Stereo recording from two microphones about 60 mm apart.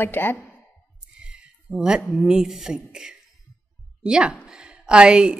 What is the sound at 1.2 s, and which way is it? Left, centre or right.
A woman's voice, centre.